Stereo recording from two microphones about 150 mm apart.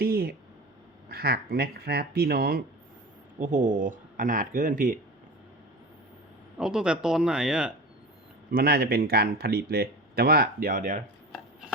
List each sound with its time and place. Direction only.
0.0 s a sound: 90° right
1.1 s speech: 90° right
3.3 s speech: 60° right (ahead or behind)
6.6 s speech: 5° right (ahead or behind)
8.4 s speech: 85° right; by 11.0 s 60° right (ahead or behind)